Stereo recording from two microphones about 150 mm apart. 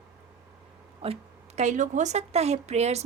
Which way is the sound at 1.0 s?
45° right (ahead or behind).